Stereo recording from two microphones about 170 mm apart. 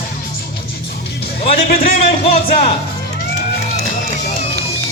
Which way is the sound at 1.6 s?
55° left (ahead or behind).